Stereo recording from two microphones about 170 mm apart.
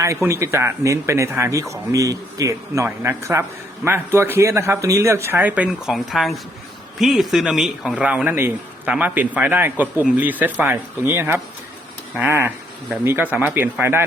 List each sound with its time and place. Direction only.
0.0 s a man's voice: 15° right (ahead or behind)